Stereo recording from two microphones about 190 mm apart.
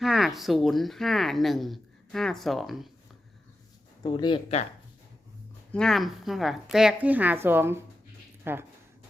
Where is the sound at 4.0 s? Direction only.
25° left (ahead or behind).